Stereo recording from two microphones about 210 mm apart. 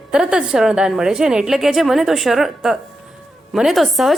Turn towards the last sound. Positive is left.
turn(degrees=0)  # may be behind; listen again after turning